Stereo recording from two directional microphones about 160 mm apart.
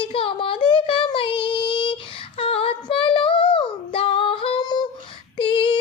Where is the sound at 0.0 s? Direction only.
35° left (ahead or behind).